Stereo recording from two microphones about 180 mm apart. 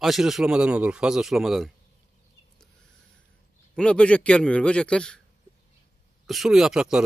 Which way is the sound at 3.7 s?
5° left (ahead or behind).